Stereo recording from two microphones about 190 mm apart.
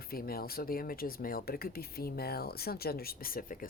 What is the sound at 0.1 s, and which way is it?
Speech, 50° left (ahead or behind).